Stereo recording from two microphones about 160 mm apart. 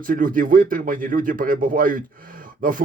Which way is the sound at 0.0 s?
60° right (ahead or behind).